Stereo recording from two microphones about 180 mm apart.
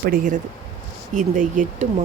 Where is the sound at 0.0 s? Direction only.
50° right (ahead or behind).